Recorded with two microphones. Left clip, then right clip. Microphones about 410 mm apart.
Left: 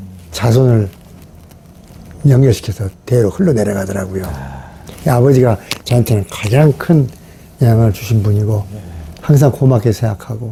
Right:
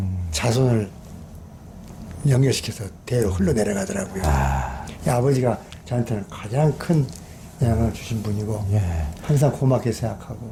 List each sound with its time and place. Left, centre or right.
0.3 s speech: left
2.2 s speech: left
4.3 s speech: right
4.9 s speech: left
9.4 s speech: left